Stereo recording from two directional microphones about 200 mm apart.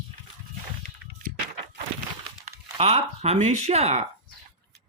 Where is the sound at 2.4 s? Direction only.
30° right (ahead or behind).